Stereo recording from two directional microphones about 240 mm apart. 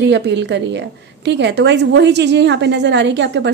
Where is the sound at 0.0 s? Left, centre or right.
Right.